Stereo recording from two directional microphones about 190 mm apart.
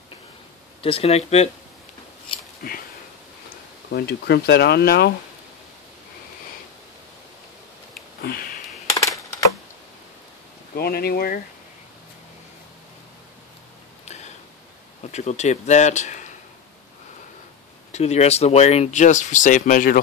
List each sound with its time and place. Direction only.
0.8 s speech: 30° left (ahead or behind)
2.6 s a sound: 50° left (ahead or behind)
3.9 s speech: 60° left (ahead or behind)
8.2 s sniff: 50° left (ahead or behind)
10.8 s speech: 55° left (ahead or behind)
15.0 s speech: 35° left (ahead or behind)
17.9 s speech: 35° left (ahead or behind)